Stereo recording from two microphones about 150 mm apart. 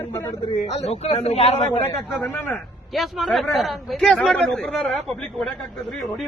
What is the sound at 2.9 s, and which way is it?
Speech, centre (ahead or behind).